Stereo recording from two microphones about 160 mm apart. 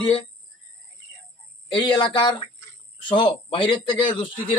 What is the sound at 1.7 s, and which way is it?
A man's voice, 30° left (ahead or behind).